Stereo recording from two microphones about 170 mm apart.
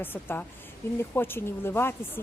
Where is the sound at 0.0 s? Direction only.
10° left (ahead or behind).